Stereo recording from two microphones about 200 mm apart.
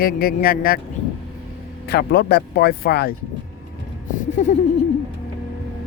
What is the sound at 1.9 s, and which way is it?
A man's voice, 55° left (ahead or behind).